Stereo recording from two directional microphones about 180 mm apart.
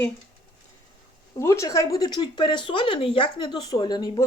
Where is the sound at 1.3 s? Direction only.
15° left (ahead or behind).